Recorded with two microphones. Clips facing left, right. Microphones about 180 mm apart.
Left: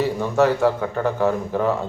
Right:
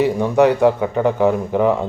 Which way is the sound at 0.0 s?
15° right (ahead or behind).